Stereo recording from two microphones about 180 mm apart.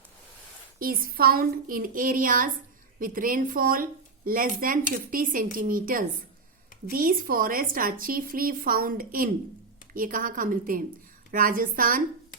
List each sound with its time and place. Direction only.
0.8 s speech: 55° right (ahead or behind)